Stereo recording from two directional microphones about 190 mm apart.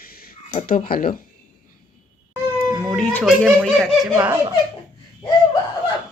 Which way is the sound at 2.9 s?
5° left (ahead or behind).